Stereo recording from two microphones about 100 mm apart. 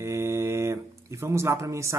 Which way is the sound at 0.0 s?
30° right (ahead or behind).